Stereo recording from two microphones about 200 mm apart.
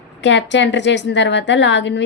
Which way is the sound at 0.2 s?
60° left (ahead or behind).